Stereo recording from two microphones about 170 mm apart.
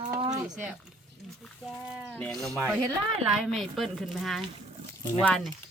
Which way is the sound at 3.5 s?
Centre (ahead or behind).